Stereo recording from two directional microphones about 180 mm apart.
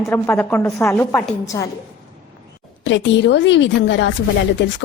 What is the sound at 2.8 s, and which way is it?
A woman's voice, 80° left.